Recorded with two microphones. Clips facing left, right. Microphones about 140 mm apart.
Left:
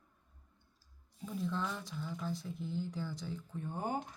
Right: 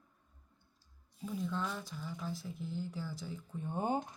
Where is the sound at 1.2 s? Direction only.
Centre (ahead or behind).